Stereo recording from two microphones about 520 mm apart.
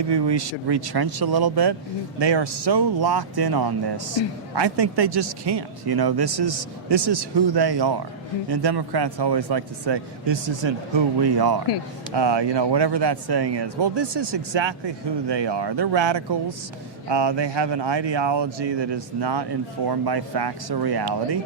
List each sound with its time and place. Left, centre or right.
0.1 s speech: right